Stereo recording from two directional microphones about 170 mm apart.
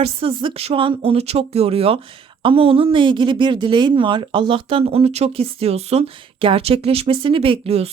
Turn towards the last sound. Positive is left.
turn(degrees=-35)  # may be behind; listen again after turning